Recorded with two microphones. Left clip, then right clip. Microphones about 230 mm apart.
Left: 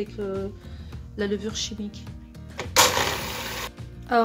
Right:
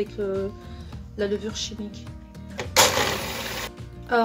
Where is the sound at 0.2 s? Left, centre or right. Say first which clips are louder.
Right 3 dB; left.